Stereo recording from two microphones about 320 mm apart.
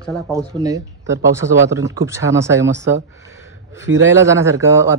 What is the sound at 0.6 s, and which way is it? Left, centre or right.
Speech, centre.